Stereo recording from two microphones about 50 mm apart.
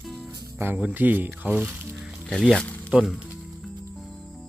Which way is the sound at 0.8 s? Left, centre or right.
Right.